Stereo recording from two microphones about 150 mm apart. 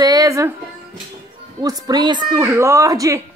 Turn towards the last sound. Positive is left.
turn(degrees=-20)  # may be behind; listen again after turning